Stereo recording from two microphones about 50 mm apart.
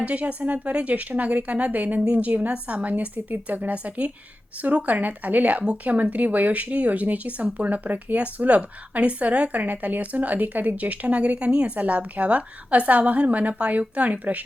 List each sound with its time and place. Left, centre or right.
0.0 s speech: right